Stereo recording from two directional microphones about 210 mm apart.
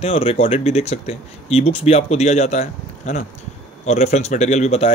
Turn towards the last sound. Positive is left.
turn(degrees=30)  # may be behind; listen again after turning